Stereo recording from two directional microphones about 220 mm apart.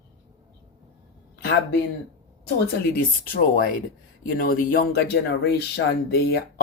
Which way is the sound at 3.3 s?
40° left (ahead or behind).